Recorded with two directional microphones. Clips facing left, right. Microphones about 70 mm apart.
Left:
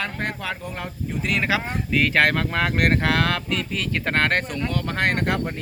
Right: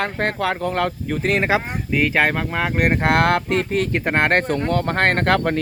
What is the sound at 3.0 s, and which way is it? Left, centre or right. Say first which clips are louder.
Speech: right 5 dB; right.